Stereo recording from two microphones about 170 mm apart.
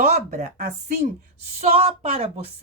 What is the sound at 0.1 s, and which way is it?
Speech, 45° right (ahead or behind).